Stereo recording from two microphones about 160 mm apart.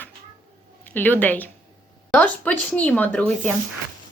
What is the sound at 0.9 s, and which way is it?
Speech, 10° left (ahead or behind).